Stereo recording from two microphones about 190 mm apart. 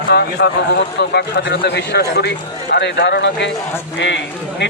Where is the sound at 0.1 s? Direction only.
60° left (ahead or behind).